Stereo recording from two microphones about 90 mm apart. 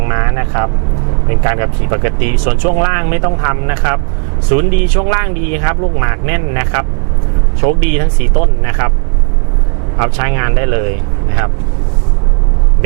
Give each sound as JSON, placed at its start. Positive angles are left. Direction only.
{"t": 0.0, "sound": "vehicle", "side_deg": -20}
{"t": 1.3, "sound": "speech", "side_deg": -15}
{"t": 10.0, "sound": "speech", "side_deg": -15}